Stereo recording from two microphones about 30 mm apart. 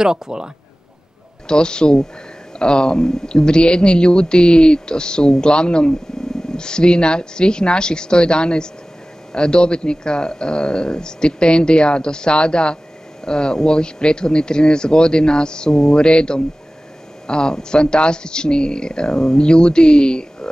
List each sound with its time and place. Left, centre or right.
0.0 s speech: right
1.5 s a man's voice: left